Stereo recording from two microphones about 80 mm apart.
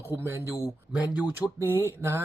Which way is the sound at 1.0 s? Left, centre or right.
Centre.